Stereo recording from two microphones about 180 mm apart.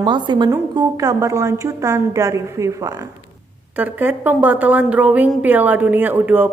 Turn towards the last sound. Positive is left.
turn(degrees=-10)  # may be behind; listen again after turning